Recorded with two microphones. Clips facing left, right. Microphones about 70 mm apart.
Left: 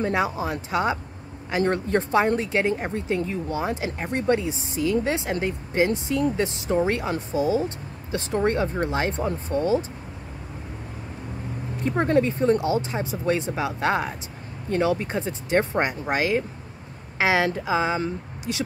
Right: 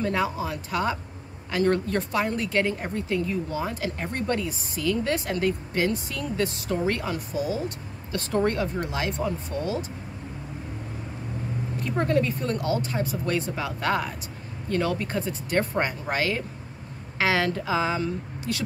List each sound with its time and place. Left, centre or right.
0.0 s speech: left
3.2 s speech: left
3.5 s speech: left
11.8 s speech: left